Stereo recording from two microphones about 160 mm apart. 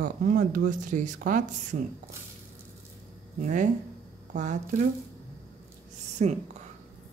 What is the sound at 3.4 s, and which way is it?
Speech, 50° right (ahead or behind).